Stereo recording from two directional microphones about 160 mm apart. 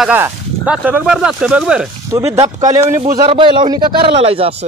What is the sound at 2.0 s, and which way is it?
Speech, 20° right (ahead or behind).